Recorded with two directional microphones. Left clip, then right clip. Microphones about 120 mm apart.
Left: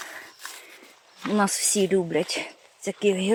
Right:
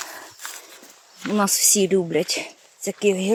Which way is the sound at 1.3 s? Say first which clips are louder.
Right 3 dB; 15° right (ahead or behind).